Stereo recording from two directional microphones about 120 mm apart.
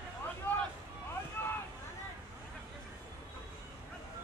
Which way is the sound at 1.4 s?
15° left (ahead or behind).